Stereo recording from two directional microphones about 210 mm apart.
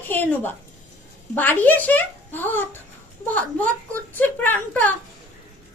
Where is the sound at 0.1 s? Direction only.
10° left (ahead or behind).